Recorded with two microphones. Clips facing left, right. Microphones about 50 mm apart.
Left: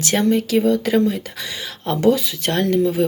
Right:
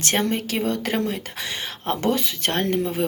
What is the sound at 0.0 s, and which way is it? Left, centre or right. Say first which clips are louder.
Speech: left 5 dB; right.